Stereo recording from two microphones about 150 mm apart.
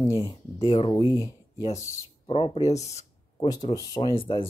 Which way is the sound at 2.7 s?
50° left (ahead or behind).